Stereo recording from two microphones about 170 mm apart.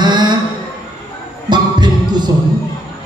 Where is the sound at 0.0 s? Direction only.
25° right (ahead or behind).